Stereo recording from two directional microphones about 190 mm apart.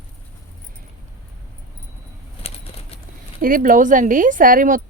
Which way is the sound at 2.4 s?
30° left (ahead or behind).